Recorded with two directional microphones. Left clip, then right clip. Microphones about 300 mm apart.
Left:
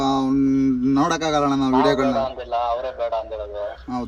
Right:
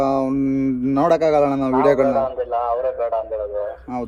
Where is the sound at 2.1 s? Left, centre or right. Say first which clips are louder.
Right 3 dB; left.